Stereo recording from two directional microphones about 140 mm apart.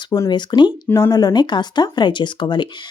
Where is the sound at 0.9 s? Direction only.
20° left (ahead or behind).